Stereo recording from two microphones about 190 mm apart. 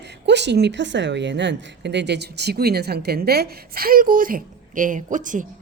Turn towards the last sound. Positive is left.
turn(degrees=-45)  # may be behind; listen again after turning